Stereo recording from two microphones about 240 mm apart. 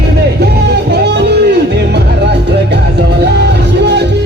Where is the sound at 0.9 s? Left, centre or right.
Right.